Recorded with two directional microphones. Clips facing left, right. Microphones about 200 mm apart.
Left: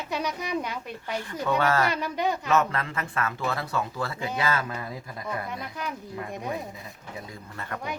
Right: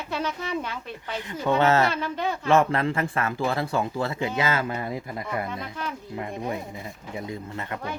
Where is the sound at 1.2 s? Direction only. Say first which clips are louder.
Right 4 dB; 20° right (ahead or behind).